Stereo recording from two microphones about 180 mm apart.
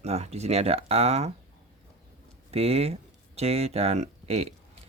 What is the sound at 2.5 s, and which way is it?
Speech, 35° right (ahead or behind).